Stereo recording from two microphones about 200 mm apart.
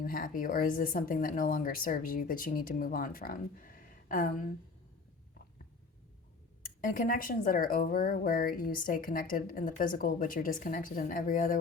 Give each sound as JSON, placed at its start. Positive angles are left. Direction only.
{"t": 0.0, "sound": "speech", "side_deg": 45}
{"t": 6.8, "sound": "speech", "side_deg": 45}